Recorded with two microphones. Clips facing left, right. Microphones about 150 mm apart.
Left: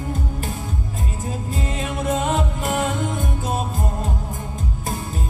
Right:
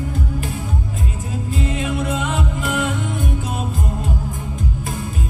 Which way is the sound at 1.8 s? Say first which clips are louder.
Right 1 dB; 40° left (ahead or behind).